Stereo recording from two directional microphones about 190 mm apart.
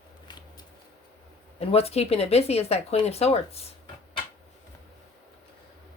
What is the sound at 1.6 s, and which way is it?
Speech, 30° left (ahead or behind).